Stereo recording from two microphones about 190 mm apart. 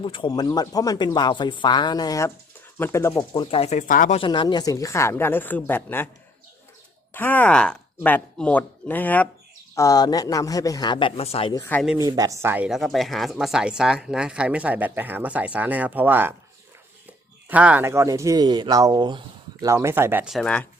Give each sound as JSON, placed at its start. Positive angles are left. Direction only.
{"t": 0.0, "sound": "a woman's voice", "side_deg": 25}
{"t": 3.3, "sound": "speech", "side_deg": 25}
{"t": 4.2, "sound": "a woman's voice", "side_deg": 25}
{"t": 7.1, "sound": "speech", "side_deg": 10}
{"t": 11.9, "sound": "speech", "side_deg": -20}
{"t": 17.5, "sound": "speech", "side_deg": -5}